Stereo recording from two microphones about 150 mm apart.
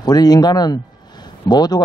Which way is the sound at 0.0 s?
25° left (ahead or behind).